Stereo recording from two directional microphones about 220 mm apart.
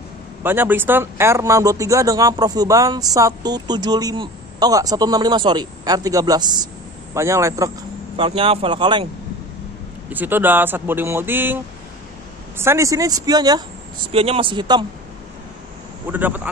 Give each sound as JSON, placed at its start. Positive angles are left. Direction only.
{"t": 0.4, "sound": "speech", "side_deg": -10}
{"t": 8.2, "sound": "speech", "side_deg": -25}
{"t": 10.0, "sound": "speech", "side_deg": -10}
{"t": 16.1, "sound": "speech", "side_deg": -10}